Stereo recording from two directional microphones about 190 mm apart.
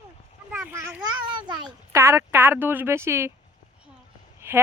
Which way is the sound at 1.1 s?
25° right (ahead or behind).